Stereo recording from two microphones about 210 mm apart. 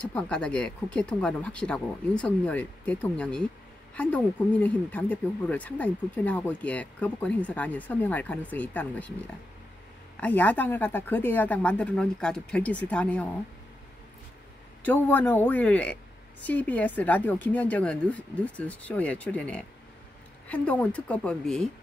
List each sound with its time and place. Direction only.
0.1 s speech: 5° left (ahead or behind)
10.2 s speech: 10° left (ahead or behind)
14.8 s speech: 10° left (ahead or behind)